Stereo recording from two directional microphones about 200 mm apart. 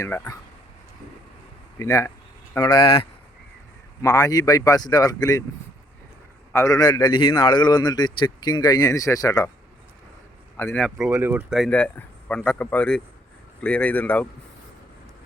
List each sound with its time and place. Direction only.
0.0 s speech: 15° left (ahead or behind)
1.8 s a man's voice: 15° left (ahead or behind)
6.5 s a man's voice: 15° left (ahead or behind)
10.6 s speech: 10° left (ahead or behind)